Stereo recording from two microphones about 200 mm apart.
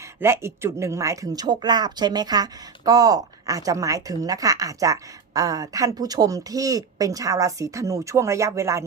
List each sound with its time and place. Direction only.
0.0 s speech: 15° right (ahead or behind)